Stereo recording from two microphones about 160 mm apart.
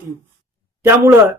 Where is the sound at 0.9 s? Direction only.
15° right (ahead or behind).